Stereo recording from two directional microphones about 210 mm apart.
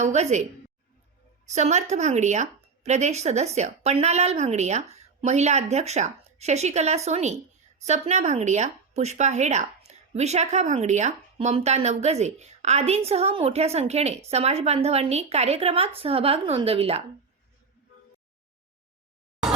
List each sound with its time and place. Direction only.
0.0 s speech: 30° right (ahead or behind)
1.5 s speech: 35° right (ahead or behind)